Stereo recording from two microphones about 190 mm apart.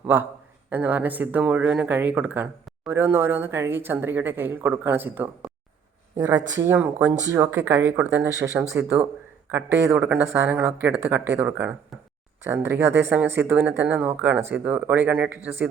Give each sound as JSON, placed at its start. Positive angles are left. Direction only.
{"t": 0.1, "sound": "speech", "side_deg": -10}